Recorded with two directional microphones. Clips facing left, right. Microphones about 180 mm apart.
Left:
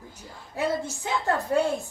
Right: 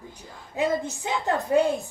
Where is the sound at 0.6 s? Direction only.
15° right (ahead or behind).